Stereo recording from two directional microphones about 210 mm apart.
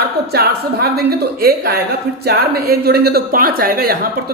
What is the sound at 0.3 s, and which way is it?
A woman's voice, 50° right (ahead or behind).